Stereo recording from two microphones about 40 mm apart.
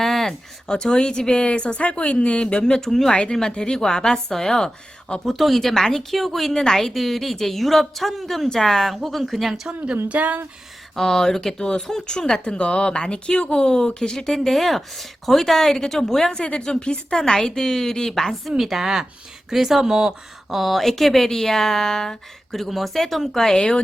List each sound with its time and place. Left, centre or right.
0.0 s a sound: centre
0.7 s speech: centre
5.2 s speech: centre
6.9 s a woman's voice: centre
9.6 s speech: right
10.1 s speech: right
10.9 s speech: centre
16.4 s speech: left
18.3 s a woman's voice: centre
22.5 s a woman's voice: centre
23.6 s speech: left